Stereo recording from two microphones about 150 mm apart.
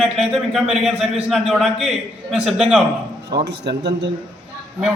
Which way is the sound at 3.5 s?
90° right.